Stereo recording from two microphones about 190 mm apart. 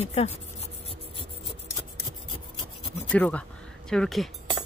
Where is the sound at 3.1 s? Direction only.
5° left (ahead or behind).